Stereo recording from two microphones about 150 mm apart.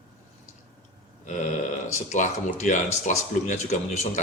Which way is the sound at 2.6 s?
55° left (ahead or behind).